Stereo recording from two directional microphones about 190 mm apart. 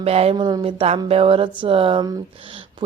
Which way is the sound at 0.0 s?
30° right (ahead or behind).